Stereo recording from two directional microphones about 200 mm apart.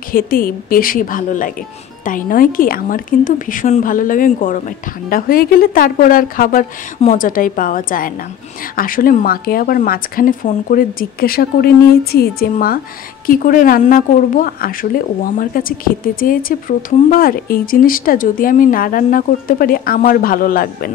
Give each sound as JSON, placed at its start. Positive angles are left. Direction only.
{"t": 0.1, "sound": "speech", "side_deg": 45}